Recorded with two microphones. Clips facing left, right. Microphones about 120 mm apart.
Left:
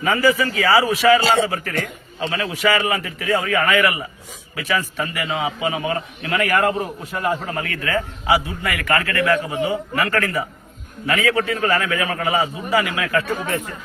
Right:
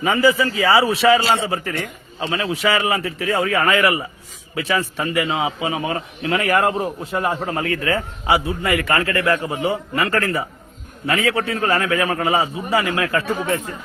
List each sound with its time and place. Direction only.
0.0 s a man's voice: 20° right (ahead or behind)